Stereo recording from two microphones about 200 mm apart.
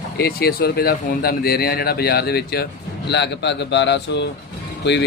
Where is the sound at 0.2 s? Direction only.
50° left (ahead or behind).